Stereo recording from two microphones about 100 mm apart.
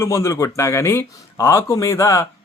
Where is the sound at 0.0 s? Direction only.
25° left (ahead or behind).